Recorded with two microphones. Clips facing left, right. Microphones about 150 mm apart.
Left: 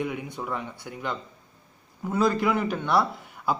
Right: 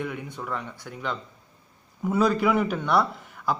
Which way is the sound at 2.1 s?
5° right (ahead or behind).